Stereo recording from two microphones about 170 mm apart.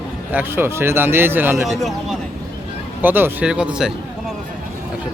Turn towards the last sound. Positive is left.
turn(degrees=-5)  # may be behind; listen again after turning